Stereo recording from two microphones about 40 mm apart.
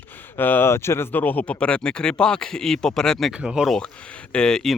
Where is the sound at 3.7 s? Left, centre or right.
Left.